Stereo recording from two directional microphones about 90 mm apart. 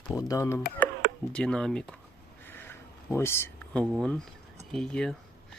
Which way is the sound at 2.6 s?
25° left (ahead or behind).